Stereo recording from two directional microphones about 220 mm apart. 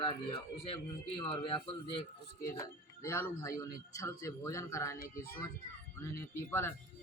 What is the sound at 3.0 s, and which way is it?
A man's voice, 10° left (ahead or behind).